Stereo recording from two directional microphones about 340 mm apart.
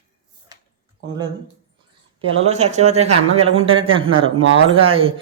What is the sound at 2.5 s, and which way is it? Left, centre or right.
Speech, centre.